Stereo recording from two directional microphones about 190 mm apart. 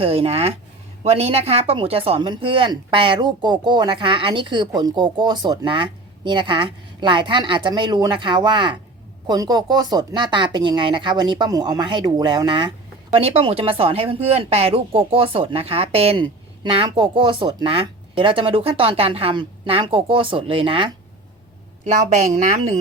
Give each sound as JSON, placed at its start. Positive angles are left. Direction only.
{"t": 0.0, "sound": "a woman's voice", "side_deg": -30}
{"t": 21.8, "sound": "a woman's voice", "side_deg": -40}